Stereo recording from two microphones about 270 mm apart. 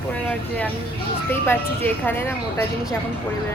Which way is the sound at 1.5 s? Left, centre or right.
Centre.